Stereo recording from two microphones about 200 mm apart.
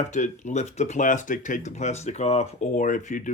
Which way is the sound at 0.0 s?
35° left (ahead or behind).